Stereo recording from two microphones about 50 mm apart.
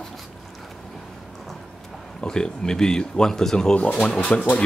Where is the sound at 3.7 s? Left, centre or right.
Left.